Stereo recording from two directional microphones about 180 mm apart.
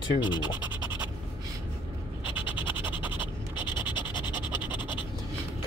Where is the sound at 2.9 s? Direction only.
25° left (ahead or behind).